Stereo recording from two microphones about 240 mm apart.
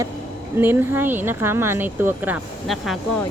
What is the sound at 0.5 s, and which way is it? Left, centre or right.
Speech, centre.